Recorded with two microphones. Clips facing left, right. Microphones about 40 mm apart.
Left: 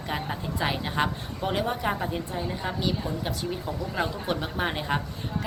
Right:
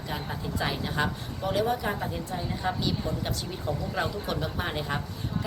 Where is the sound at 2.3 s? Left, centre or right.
Centre.